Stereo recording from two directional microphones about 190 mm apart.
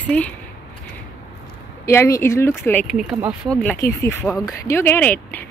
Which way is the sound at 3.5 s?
5° left (ahead or behind).